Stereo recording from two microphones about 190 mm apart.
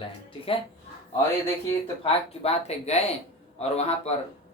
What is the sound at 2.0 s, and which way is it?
Speech, 30° left (ahead or behind).